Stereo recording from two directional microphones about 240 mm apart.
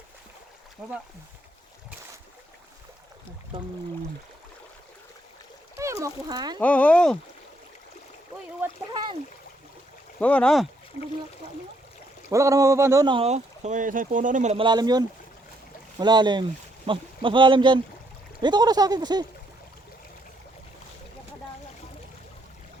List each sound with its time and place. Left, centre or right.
0.8 s speech: centre
5.7 s speech: centre
6.6 s speech: centre
8.9 s speech: centre
10.2 s speech: centre
12.3 s speech: centre